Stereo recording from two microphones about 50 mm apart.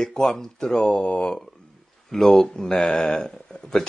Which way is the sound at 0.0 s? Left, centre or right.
Centre.